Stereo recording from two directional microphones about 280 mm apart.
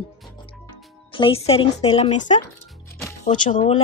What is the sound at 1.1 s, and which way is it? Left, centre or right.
Speech, centre.